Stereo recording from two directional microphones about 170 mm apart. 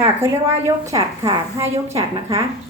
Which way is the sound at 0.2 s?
15° right (ahead or behind).